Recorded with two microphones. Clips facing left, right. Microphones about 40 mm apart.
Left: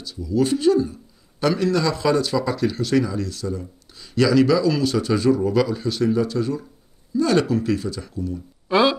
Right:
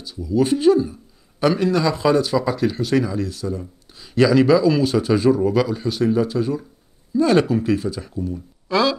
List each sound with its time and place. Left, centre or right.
0.0 s speech: centre
4.1 s speech: right
5.4 s speech: centre
8.6 s speech: left